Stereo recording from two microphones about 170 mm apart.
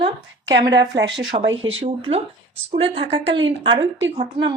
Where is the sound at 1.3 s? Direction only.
40° right (ahead or behind).